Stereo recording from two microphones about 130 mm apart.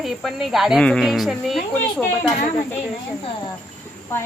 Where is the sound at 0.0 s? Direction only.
Centre (ahead or behind).